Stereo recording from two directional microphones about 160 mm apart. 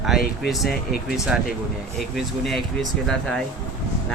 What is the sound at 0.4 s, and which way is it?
Speech, centre (ahead or behind).